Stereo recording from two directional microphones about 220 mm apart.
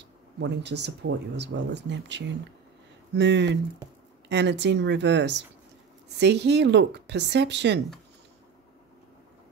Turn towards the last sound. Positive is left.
turn(degrees=-50)  # may be behind; listen again after turning